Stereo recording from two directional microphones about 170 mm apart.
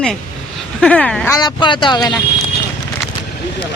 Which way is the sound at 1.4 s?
25° left (ahead or behind).